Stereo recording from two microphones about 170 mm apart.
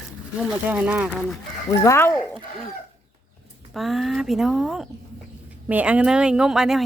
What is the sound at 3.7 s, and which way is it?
Speech, centre (ahead or behind).